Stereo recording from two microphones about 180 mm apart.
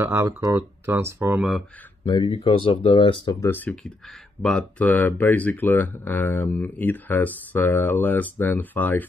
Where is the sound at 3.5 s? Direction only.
10° left (ahead or behind).